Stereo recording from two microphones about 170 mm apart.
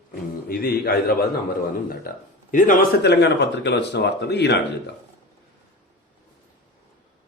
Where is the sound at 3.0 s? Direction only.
85° left.